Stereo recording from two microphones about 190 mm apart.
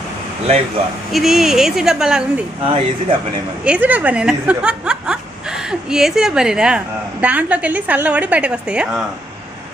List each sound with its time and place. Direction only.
1.1 s speech: centre (ahead or behind)
2.6 s speech: 25° right (ahead or behind)
3.6 s speech: 5° right (ahead or behind)